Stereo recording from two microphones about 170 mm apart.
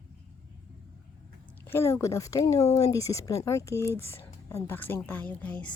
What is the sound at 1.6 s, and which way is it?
Speech, 15° left (ahead or behind).